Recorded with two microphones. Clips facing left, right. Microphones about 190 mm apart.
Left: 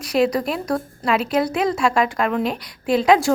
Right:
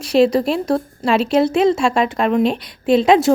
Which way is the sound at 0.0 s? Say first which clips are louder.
Right 5 dB; 25° right (ahead or behind).